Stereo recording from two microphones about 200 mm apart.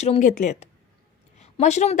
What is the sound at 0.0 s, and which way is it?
A woman's voice, 35° left (ahead or behind).